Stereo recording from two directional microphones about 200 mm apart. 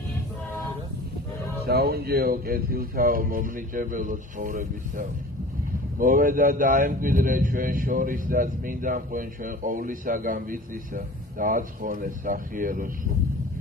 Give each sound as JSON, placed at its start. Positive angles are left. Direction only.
{"t": 1.7, "sound": "speech", "side_deg": -50}